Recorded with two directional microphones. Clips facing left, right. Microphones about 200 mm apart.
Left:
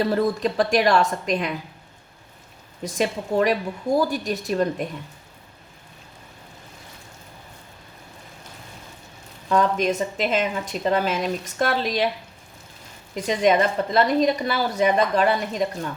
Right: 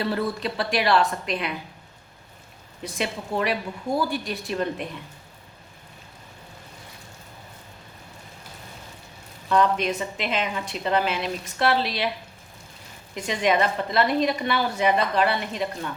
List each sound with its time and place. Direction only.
0.1 s a woman's voice: 45° left (ahead or behind)
2.8 s a woman's voice: 40° left (ahead or behind)
9.5 s a woman's voice: 45° left (ahead or behind)
13.1 s a woman's voice: 40° left (ahead or behind)